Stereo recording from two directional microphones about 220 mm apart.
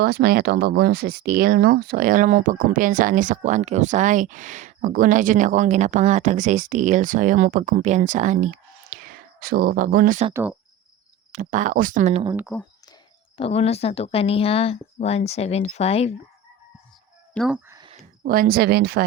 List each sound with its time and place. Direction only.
0.0 s speech: 45° right (ahead or behind)
11.3 s speech: 35° right (ahead or behind)
12.2 s speech: 15° right (ahead or behind)
13.3 s speech: 25° left (ahead or behind)
17.3 s speech: centre (ahead or behind)
17.7 s a sound: 20° right (ahead or behind)
18.3 s a woman's voice: 40° right (ahead or behind)